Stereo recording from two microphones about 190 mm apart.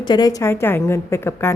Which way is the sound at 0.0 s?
20° left (ahead or behind).